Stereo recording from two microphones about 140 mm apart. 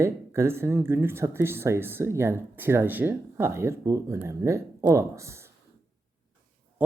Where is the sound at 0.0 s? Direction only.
20° right (ahead or behind).